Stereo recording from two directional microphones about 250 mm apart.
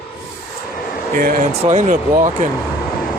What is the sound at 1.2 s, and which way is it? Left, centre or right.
Speech, right.